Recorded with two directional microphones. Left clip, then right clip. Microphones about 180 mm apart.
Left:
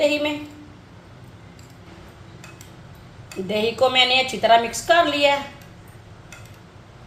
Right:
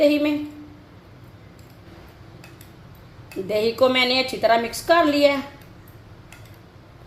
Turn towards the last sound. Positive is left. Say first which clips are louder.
# even
turn(degrees=-40)  # may be behind; listen again after turning